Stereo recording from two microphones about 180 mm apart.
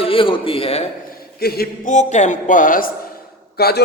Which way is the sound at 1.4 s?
60° left (ahead or behind).